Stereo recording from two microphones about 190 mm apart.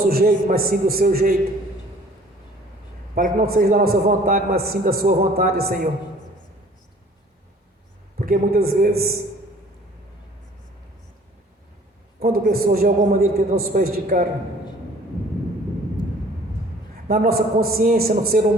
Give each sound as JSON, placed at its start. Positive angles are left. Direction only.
{"t": 0.0, "sound": "a man's voice", "side_deg": -50}
{"t": 3.2, "sound": "a man's voice", "side_deg": -50}
{"t": 8.2, "sound": "a man's voice", "side_deg": -50}
{"t": 12.2, "sound": "a man's voice", "side_deg": -50}
{"t": 17.1, "sound": "a man's voice", "side_deg": -50}